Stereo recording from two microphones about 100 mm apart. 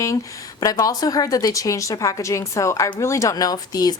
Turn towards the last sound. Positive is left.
turn(degrees=40)  # may be behind; listen again after turning